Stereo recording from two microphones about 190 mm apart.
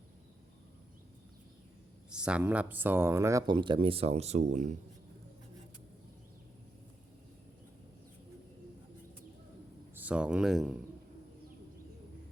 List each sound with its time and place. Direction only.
2.0 s speech: 5° right (ahead or behind); by 4.7 s 35° right (ahead or behind)
9.9 s a man's voice: 10° right (ahead or behind)